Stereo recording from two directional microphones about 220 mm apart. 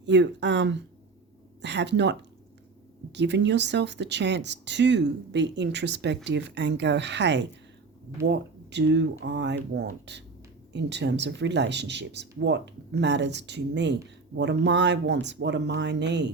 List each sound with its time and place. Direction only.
0.0 s speech: 50° right (ahead or behind)